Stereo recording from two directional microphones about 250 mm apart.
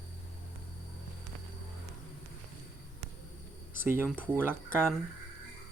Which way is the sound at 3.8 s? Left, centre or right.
Centre.